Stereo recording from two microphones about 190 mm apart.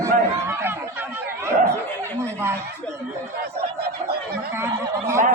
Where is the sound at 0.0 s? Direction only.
15° right (ahead or behind).